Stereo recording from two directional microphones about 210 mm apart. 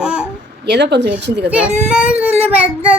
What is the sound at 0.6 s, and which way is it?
Speech, 55° right (ahead or behind).